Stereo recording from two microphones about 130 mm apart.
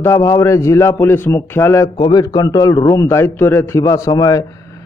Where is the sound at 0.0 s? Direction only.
20° left (ahead or behind).